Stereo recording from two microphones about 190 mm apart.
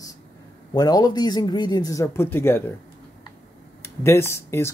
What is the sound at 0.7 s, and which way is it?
Speech, 20° left (ahead or behind).